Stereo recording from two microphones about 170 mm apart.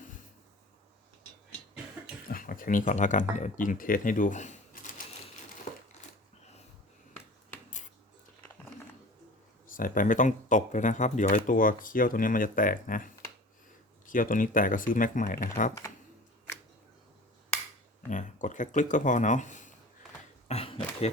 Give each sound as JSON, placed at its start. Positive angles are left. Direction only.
{"t": 2.2, "sound": "speech", "side_deg": 55}
{"t": 5.7, "sound": "crushing", "side_deg": 45}
{"t": 9.7, "sound": "speech", "side_deg": 55}
{"t": 14.1, "sound": "speech", "side_deg": 50}
{"t": 18.1, "sound": "speech", "side_deg": 50}
{"t": 20.5, "sound": "cough", "side_deg": 35}